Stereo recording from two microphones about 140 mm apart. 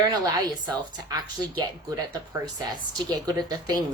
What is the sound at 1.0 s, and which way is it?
A woman's voice, 30° right (ahead or behind).